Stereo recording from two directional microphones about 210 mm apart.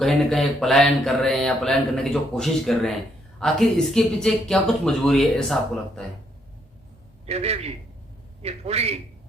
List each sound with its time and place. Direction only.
0.0 s speech: centre (ahead or behind)
7.3 s a man's voice: 30° right (ahead or behind)